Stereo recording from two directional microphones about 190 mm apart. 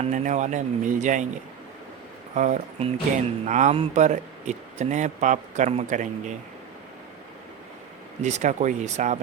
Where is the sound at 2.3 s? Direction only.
40° right (ahead or behind).